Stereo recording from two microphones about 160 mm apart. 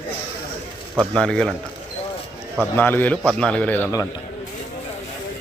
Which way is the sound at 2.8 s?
10° left (ahead or behind).